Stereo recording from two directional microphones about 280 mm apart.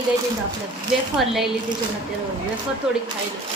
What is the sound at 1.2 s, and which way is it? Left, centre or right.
Speech, centre.